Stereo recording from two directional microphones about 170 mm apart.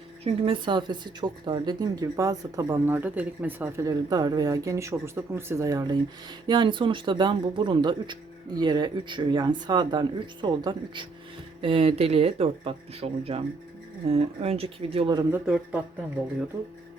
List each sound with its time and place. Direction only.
0.4 s speech: 30° right (ahead or behind)
15.3 s speech: 5° right (ahead or behind)